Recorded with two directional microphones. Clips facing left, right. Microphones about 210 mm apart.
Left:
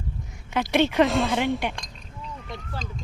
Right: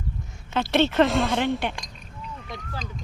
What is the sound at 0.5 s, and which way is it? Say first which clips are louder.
Speech: even; 15° left (ahead or behind).